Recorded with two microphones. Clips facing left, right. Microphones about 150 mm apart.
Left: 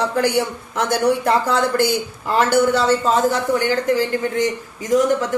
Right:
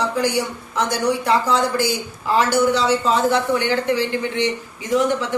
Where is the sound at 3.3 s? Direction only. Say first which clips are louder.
Even; 40° left (ahead or behind).